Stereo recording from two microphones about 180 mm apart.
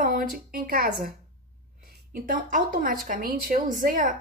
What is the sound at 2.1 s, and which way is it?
A woman's voice, 50° right (ahead or behind).